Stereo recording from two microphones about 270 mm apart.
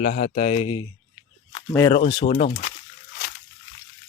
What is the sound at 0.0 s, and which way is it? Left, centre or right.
Speech, left.